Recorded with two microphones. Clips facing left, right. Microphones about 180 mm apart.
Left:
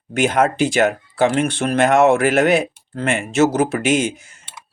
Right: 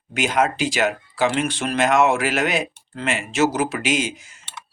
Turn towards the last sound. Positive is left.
turn(degrees=50)  # may be behind; listen again after turning